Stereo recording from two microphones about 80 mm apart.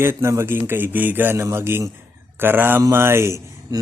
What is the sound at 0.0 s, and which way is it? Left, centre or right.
Speech, right.